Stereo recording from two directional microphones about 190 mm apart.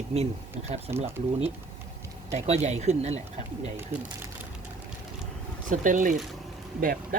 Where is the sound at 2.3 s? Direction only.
35° right (ahead or behind).